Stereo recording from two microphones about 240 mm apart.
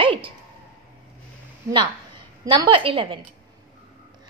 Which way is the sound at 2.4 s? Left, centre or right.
Centre.